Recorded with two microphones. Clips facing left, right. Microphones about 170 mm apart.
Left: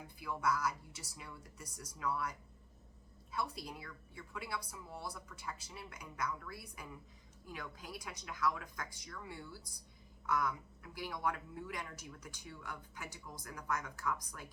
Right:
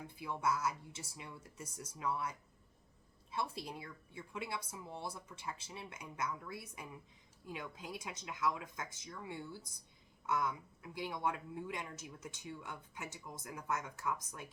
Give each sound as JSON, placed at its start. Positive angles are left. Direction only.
{"t": 0.2, "sound": "a woman's voice", "side_deg": -25}
{"t": 3.3, "sound": "a woman's voice", "side_deg": -25}